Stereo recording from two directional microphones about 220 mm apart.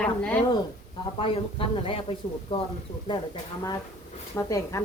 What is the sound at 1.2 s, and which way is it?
A woman's voice, 25° left (ahead or behind).